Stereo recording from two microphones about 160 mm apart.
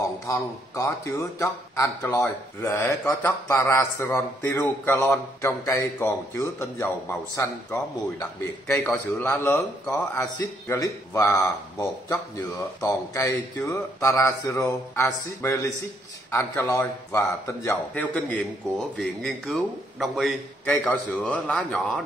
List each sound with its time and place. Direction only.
0.3 s a man's voice: 20° left (ahead or behind)
12.8 s a man's voice: 10° left (ahead or behind)
17.9 s speech: 10° left (ahead or behind)